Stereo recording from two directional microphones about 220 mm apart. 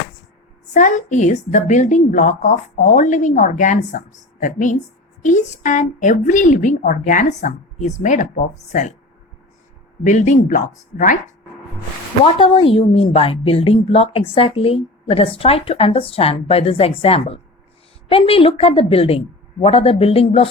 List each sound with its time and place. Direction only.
0.7 s a woman's voice: 35° left (ahead or behind)
10.0 s a woman's voice: 35° left (ahead or behind)
12.2 s a woman's voice: 25° left (ahead or behind)